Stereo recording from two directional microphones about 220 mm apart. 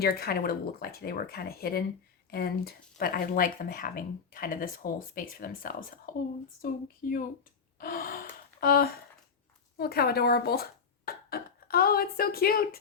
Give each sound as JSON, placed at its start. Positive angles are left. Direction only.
{"t": 0.0, "sound": "speech", "side_deg": 45}
{"t": 7.8, "sound": "gasp", "side_deg": 40}
{"t": 8.6, "sound": "speech", "side_deg": 40}